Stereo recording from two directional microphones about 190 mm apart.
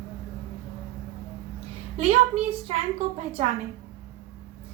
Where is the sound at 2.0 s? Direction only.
30° right (ahead or behind).